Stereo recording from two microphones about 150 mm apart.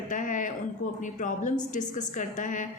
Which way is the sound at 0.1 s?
60° left (ahead or behind).